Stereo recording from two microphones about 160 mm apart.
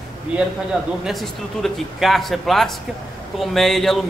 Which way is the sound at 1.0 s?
Centre (ahead or behind).